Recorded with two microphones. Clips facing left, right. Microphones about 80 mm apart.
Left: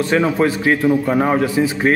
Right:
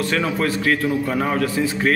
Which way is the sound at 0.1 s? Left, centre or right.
Left.